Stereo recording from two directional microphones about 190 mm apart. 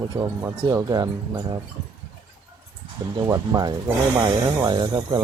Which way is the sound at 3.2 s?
20° right (ahead or behind).